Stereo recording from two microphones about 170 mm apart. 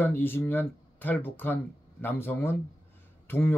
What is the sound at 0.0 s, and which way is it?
Speech, 10° left (ahead or behind).